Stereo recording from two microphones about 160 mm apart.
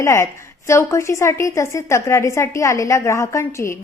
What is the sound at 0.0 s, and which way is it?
A woman's voice, 20° left (ahead or behind).